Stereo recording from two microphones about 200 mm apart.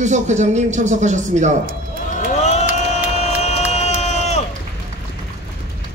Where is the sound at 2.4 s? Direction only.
35° left (ahead or behind).